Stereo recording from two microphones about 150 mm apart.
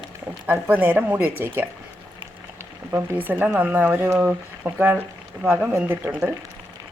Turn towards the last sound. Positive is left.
turn(degrees=-10)  # may be behind; listen again after turning